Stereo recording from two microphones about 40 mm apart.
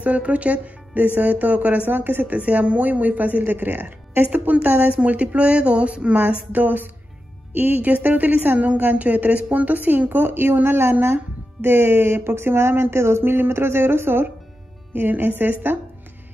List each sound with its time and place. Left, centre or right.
0.0 s speech: right
1.9 s a woman's voice: right
2.2 s speech: right
6.2 s speech: right
15.0 s a woman's voice: right